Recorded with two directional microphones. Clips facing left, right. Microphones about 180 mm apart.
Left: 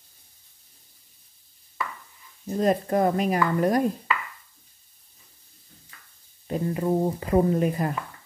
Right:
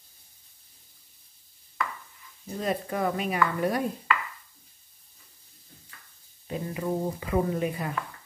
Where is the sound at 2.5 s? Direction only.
45° left (ahead or behind).